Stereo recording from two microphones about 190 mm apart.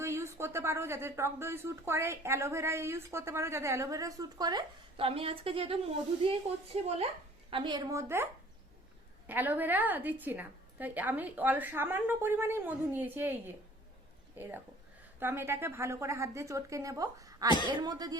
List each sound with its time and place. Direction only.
0.0 s a woman's voice: 15° right (ahead or behind); by 5.7 s 30° right (ahead or behind)
6.8 s a woman's voice: 35° right (ahead or behind)